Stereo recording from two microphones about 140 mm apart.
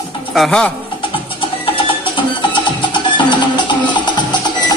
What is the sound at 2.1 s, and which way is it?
Music, 35° left (ahead or behind).